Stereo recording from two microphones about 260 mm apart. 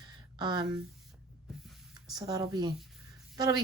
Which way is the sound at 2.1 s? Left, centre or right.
Centre.